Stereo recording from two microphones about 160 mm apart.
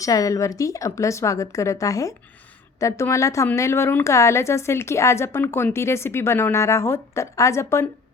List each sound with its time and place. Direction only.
0.0 s a woman's voice: 20° left (ahead or behind)